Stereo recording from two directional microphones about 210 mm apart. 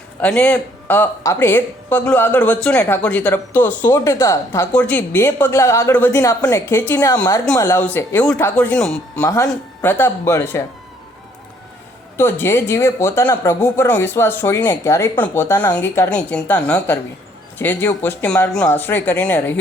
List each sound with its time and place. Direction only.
0.2 s a woman's voice: 5° left (ahead or behind)
12.1 s a woman's voice: 10° left (ahead or behind)